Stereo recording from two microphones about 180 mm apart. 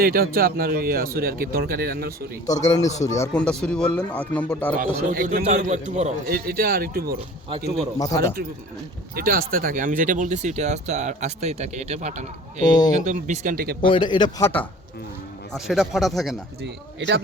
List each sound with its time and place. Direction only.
0.0 s speech: 55° right (ahead or behind)
2.6 s speech: 15° left (ahead or behind)
3.3 s speech: 5° left (ahead or behind)
4.8 s a man's voice: 50° right (ahead or behind)
6.2 s speech: 55° right (ahead or behind)
7.9 s a man's voice: 20° left (ahead or behind)
9.1 s speech: 50° right (ahead or behind)
12.6 s a man's voice: 25° left (ahead or behind)
13.1 s a man's voice: 40° right (ahead or behind)
13.8 s a man's voice: 25° left (ahead or behind)
15.5 s speech: centre (ahead or behind)
16.6 s speech: 70° right (ahead or behind)